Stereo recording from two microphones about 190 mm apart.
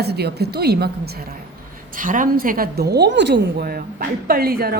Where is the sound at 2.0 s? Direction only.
45° right (ahead or behind).